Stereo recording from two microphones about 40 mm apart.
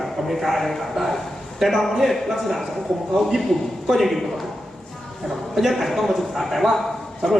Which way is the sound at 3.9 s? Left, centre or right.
Centre.